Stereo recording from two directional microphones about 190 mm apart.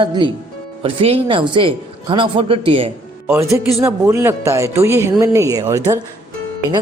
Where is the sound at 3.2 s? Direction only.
10° right (ahead or behind).